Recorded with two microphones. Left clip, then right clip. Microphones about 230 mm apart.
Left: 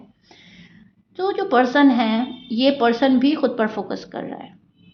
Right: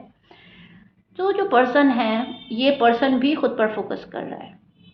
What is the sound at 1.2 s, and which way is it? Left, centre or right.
Speech, left.